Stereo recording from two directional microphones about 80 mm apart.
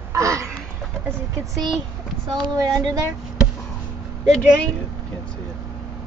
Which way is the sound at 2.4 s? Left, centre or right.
Right.